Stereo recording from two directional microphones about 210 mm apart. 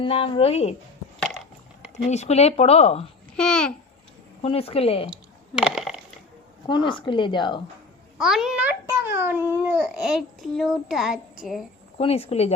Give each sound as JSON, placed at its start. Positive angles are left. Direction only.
{"t": 0.0, "sound": "speech", "side_deg": 25}
{"t": 2.0, "sound": "speech", "side_deg": 30}
{"t": 3.3, "sound": "a child's voice", "side_deg": 5}
{"t": 4.4, "sound": "speech", "side_deg": 30}
{"t": 5.5, "sound": "a sound", "side_deg": 0}
{"t": 6.7, "sound": "speech", "side_deg": 20}
{"t": 8.2, "sound": "a child's voice", "side_deg": 0}
{"t": 11.9, "sound": "speech", "side_deg": 30}